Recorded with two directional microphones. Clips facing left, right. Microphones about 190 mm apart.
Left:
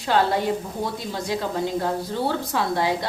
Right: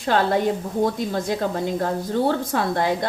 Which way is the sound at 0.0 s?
50° right (ahead or behind).